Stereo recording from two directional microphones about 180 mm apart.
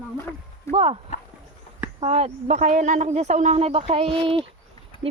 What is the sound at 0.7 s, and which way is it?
Speech, 35° right (ahead or behind).